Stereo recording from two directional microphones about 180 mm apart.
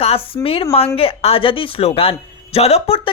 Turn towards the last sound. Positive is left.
turn(degrees=30)  # may be behind; listen again after turning